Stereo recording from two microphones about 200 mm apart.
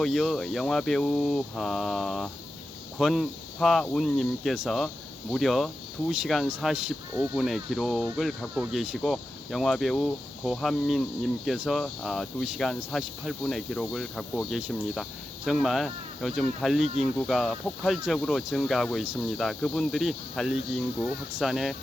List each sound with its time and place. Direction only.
0.0 s speech: centre (ahead or behind)
16.8 s speech: 35° right (ahead or behind)
17.2 s speech: centre (ahead or behind)